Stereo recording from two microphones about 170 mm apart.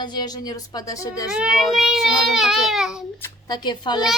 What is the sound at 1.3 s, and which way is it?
Speech, 5° right (ahead or behind).